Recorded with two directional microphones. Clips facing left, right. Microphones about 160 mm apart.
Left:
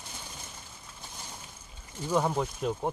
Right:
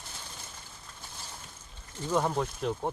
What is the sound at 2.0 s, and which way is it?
Speech, 10° left (ahead or behind).